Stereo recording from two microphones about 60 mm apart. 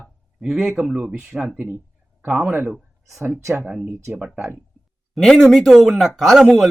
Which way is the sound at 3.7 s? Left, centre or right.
Centre.